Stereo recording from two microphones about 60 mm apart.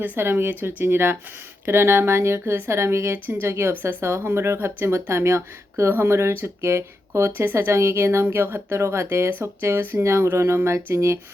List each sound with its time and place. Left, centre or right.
0.2 s speech: right
2.4 s speech: right
2.6 s speech: right
7.3 s speech: right